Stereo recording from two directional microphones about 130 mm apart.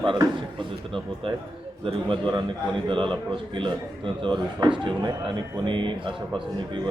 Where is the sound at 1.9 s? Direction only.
40° right (ahead or behind).